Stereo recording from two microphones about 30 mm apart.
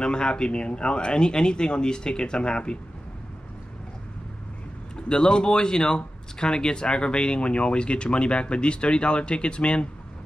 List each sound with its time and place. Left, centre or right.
0.0 s speech: left
4.9 s speech: left